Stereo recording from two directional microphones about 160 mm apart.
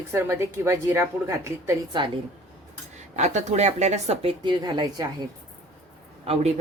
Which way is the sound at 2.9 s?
45° right (ahead or behind).